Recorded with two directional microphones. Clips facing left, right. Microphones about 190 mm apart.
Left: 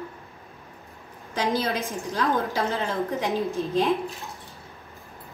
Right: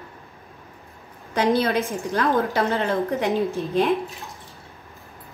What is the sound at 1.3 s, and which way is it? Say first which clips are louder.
A woman's voice: right 5 dB; 60° right (ahead or behind).